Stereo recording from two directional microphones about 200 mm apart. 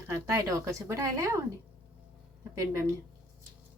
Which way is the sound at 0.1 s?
20° right (ahead or behind).